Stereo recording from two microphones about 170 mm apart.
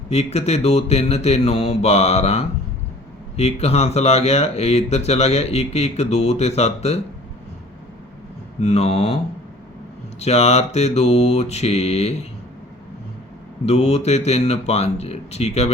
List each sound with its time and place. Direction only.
0.1 s speech: 40° left (ahead or behind)
8.6 s speech: 40° left (ahead or behind)
10.2 s speech: 40° left (ahead or behind)
13.7 s speech: 40° left (ahead or behind)